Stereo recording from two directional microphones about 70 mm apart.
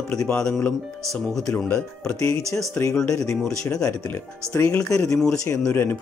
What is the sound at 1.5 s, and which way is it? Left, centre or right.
Speech, left.